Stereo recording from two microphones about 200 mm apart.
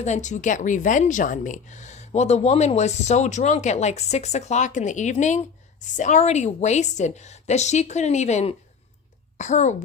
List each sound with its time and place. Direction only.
0.0 s a woman's voice: 35° left (ahead or behind)